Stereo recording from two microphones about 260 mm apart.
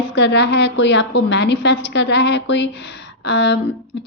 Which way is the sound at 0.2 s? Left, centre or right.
Left.